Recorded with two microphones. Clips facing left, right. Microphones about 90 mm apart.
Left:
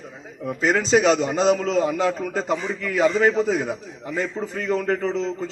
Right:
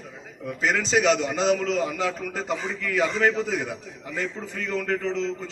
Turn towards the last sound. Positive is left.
turn(degrees=20)  # may be behind; listen again after turning